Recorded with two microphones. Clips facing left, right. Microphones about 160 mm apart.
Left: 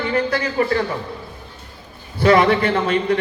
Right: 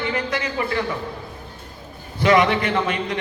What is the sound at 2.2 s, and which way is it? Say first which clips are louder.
Speech: left 3 dB; 35° left (ahead or behind).